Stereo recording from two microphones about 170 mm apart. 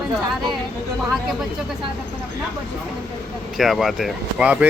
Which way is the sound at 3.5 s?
Centre (ahead or behind).